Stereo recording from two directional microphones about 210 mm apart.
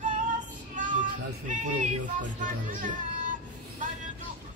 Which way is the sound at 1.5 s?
35° right (ahead or behind).